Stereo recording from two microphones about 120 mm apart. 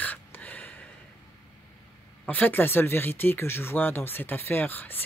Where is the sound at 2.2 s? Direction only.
15° left (ahead or behind).